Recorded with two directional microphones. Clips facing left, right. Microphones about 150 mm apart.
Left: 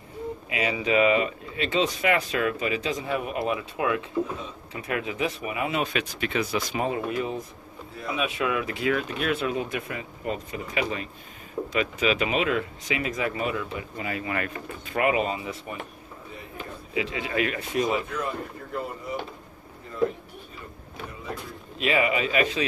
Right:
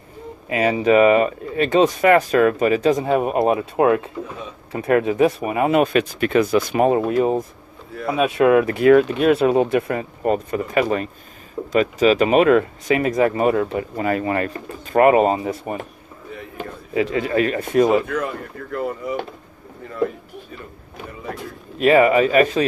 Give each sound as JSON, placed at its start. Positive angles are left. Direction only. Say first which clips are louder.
{"t": 0.5, "sound": "speech", "louder": "right 10 dB", "side_deg": -45}
{"t": 9.8, "sound": "speech", "louder": "right 12 dB", "side_deg": -55}
{"t": 11.7, "sound": "speech", "louder": "right 10 dB", "side_deg": -40}
{"t": 14.3, "sound": "speech", "louder": "right 7 dB", "side_deg": -35}
{"t": 16.9, "sound": "speech", "louder": "right 9 dB", "side_deg": -45}
{"t": 21.7, "sound": "speech", "louder": "right 11 dB", "side_deg": -45}